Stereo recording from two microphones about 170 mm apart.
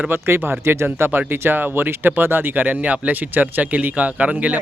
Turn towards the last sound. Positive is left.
turn(degrees=-10)  # may be behind; listen again after turning